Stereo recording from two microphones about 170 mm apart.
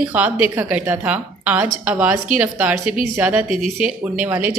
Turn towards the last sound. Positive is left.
turn(degrees=-10)  # may be behind; listen again after turning